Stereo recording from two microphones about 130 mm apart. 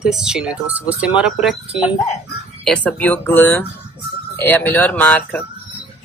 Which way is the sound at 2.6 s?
10° left (ahead or behind).